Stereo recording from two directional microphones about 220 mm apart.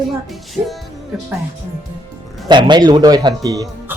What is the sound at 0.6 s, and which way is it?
Speech, 10° right (ahead or behind).